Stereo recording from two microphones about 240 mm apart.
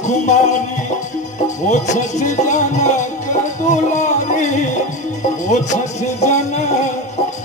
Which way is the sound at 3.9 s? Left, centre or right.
Left.